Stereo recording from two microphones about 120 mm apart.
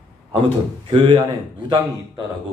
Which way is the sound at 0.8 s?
40° right (ahead or behind).